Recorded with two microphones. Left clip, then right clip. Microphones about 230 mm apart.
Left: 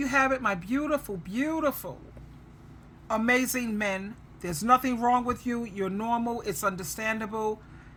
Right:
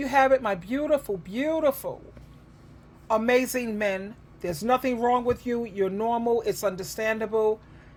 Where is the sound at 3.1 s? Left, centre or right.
Centre.